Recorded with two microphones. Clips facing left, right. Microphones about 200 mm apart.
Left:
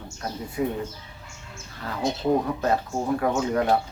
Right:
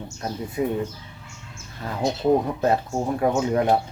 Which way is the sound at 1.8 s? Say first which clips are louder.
Right 2 dB; 20° right (ahead or behind).